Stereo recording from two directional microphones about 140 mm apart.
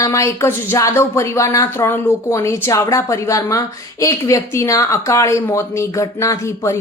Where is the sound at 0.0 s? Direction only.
20° left (ahead or behind).